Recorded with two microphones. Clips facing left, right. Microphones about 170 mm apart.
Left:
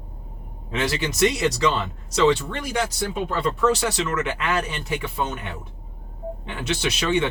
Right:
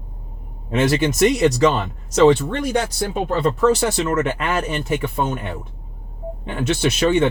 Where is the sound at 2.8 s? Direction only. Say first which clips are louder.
Right 3 dB; 40° right (ahead or behind).